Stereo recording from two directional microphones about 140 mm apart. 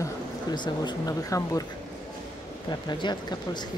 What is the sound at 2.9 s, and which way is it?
Speech, 30° left (ahead or behind).